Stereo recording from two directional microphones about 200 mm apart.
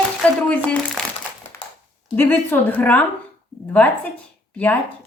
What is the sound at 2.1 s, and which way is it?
Speech, 10° left (ahead or behind).